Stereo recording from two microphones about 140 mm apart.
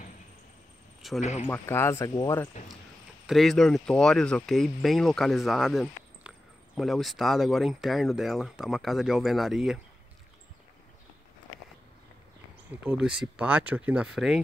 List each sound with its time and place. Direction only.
1.0 s a sound: centre (ahead or behind)
1.5 s speech: 15° left (ahead or behind)
2.6 s speech: 55° left (ahead or behind)
3.3 s speech: centre (ahead or behind)
12.8 s speech: 5° right (ahead or behind)